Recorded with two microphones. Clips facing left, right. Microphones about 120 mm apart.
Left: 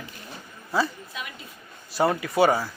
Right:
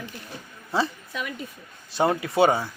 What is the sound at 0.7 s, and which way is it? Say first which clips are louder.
Speech: even; 25° right (ahead or behind).